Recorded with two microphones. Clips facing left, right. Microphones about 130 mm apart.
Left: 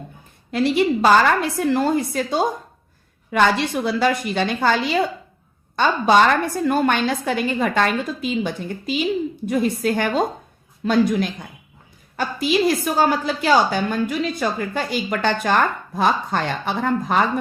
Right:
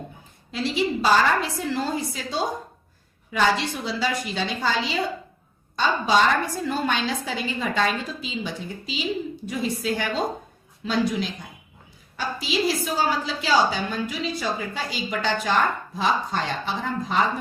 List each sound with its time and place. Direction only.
0.5 s a woman's voice: 55° left (ahead or behind)